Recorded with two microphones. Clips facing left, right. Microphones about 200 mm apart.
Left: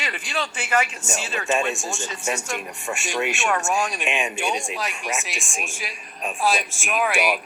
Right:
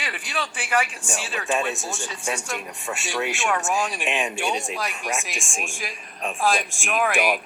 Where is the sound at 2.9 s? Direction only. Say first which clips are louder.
Left 2 dB; 15° left (ahead or behind).